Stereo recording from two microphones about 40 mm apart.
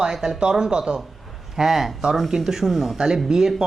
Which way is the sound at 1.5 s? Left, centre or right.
Centre.